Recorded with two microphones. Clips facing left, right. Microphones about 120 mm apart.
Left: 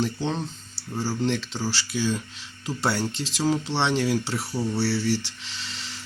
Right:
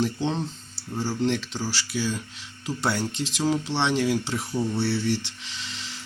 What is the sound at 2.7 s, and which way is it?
Speech, 15° left (ahead or behind).